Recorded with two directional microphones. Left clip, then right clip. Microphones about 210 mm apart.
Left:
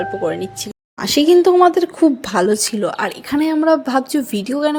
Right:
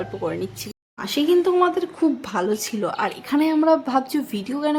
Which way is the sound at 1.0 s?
30° left (ahead or behind).